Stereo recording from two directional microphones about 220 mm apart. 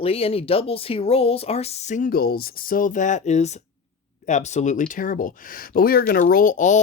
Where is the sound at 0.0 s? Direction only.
25° left (ahead or behind).